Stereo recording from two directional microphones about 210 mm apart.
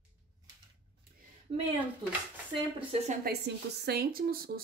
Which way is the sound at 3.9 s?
50° right (ahead or behind).